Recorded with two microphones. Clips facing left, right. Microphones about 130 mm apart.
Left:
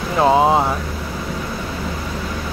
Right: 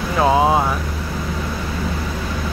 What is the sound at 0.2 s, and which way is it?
Speech, 25° left (ahead or behind).